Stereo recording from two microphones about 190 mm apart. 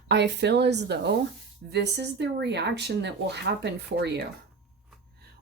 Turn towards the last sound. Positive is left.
turn(degrees=-65)  # may be behind; listen again after turning